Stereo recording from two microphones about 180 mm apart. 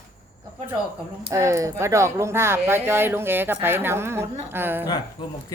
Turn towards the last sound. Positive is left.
turn(degrees=-10)  # may be behind; listen again after turning